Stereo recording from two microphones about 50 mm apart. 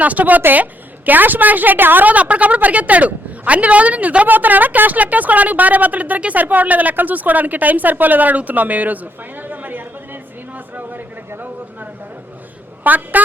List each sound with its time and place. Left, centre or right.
0.0 s a woman's voice: right
9.5 s chatter: right
12.8 s a woman's voice: right